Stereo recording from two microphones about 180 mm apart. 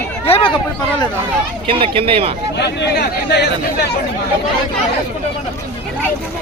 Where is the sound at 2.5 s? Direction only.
70° left (ahead or behind).